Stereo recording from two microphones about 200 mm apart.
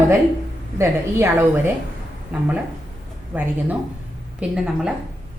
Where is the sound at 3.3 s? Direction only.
10° right (ahead or behind).